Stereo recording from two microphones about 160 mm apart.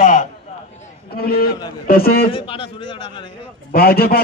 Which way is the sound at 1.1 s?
70° left (ahead or behind).